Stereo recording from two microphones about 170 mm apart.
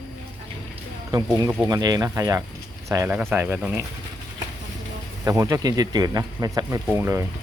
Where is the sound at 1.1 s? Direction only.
20° right (ahead or behind).